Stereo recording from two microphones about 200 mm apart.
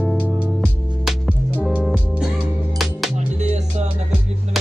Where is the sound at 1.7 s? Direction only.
5° right (ahead or behind).